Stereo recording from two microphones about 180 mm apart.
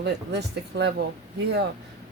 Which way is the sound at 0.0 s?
70° right (ahead or behind).